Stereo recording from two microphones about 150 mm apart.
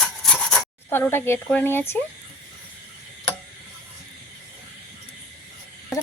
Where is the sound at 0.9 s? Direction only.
15° left (ahead or behind).